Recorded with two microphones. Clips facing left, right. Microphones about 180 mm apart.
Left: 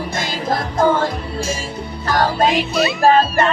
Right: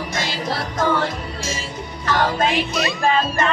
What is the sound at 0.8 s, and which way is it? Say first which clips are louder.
Music: left 3 dB; 45° left (ahead or behind).